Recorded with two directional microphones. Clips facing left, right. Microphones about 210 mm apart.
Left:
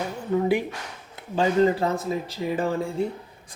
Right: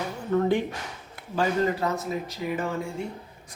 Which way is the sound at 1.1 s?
25° left (ahead or behind).